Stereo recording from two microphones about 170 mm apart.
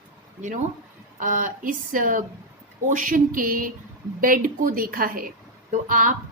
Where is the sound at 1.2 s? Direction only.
50° right (ahead or behind).